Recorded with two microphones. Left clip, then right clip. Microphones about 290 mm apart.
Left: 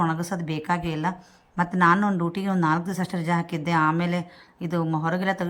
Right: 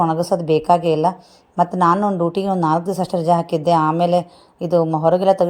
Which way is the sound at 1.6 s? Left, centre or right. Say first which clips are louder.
Right 5 dB; centre.